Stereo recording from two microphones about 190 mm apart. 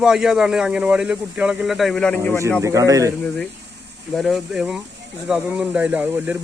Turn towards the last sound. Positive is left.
turn(degrees=-5)  # may be behind; listen again after turning